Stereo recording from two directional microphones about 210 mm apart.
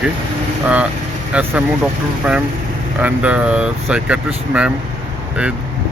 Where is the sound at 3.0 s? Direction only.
5° right (ahead or behind).